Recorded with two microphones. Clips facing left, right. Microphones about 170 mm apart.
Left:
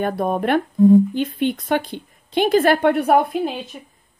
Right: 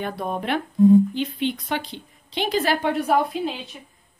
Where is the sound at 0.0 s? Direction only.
50° left (ahead or behind).